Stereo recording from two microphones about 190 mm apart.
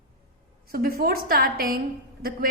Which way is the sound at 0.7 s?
50° right (ahead or behind).